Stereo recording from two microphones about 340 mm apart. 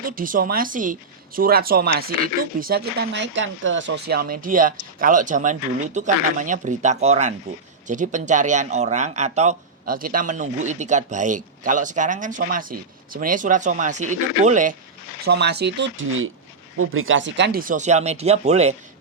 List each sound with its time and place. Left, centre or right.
0.0 s speech: right